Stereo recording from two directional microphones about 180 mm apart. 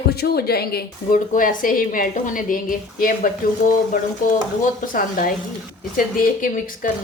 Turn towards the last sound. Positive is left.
turn(degrees=50)  # may be behind; listen again after turning